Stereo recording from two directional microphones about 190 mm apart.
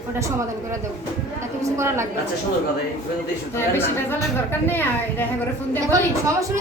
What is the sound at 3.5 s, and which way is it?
A woman's voice, 10° left (ahead or behind).